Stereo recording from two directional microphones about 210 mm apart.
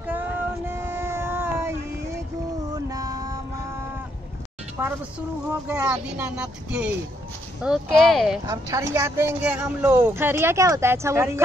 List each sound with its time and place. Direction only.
0.0 s a sound: 10° right (ahead or behind)
2.7 s music: 15° right (ahead or behind)
4.8 s speech: 10° right (ahead or behind)
8.5 s speech: 15° right (ahead or behind)